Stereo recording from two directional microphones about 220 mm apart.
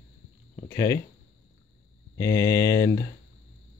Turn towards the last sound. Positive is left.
turn(degrees=15)  # may be behind; listen again after turning